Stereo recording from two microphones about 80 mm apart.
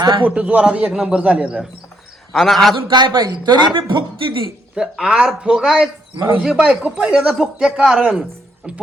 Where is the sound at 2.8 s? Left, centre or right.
Right.